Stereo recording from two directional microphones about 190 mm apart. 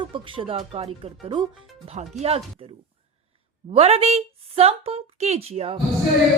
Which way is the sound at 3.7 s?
30° right (ahead or behind).